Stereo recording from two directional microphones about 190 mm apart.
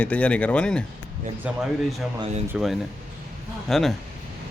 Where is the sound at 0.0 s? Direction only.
5° left (ahead or behind).